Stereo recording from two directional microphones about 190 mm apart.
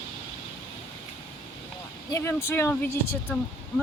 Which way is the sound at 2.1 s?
15° left (ahead or behind).